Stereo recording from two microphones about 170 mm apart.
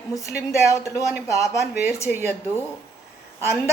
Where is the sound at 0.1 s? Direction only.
20° left (ahead or behind).